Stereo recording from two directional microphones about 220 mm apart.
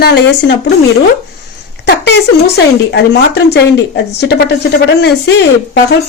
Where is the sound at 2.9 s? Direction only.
50° left (ahead or behind).